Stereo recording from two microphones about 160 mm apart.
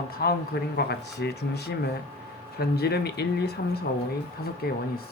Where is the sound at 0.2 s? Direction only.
75° left (ahead or behind).